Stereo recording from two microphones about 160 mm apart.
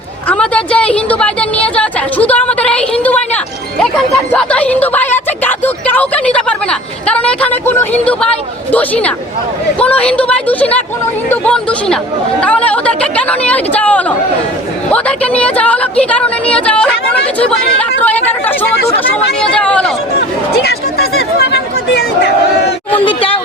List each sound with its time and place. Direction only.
0.3 s a sound: 5° left (ahead or behind)
4.3 s music: 10° left (ahead or behind)
6.3 s a woman's voice: 5° left (ahead or behind)
18.0 s a woman's voice: 10° left (ahead or behind)
20.1 s speech: 85° left
23.0 s speech: 35° left (ahead or behind)